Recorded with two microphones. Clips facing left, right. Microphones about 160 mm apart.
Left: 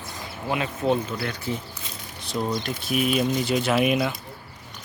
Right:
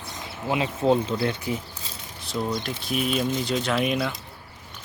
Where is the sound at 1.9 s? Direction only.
30° right (ahead or behind).